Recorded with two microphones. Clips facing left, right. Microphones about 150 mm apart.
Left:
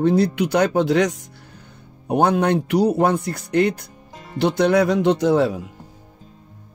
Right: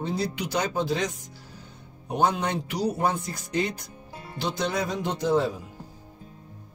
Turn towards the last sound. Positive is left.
turn(degrees=75)  # may be behind; listen again after turning